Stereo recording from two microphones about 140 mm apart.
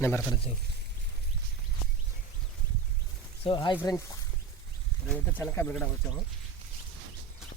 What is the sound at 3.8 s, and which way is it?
Speech, 25° left (ahead or behind).